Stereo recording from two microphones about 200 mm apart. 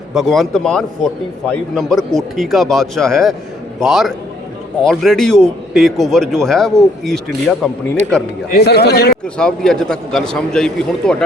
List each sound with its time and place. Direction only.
0.1 s a man's voice: centre (ahead or behind)
8.5 s speech: 55° left (ahead or behind)
9.2 s a man's voice: 5° left (ahead or behind)